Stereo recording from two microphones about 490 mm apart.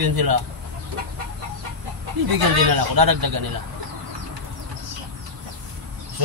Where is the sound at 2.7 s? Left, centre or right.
Right.